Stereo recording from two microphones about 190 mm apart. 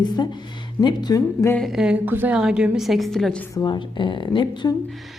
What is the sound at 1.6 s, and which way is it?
A woman's voice, centre (ahead or behind).